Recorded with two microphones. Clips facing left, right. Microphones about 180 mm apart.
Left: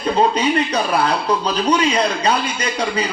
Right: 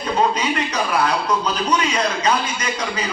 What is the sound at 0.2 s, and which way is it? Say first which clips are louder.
A man's voice: left 3 dB; 30° left (ahead or behind).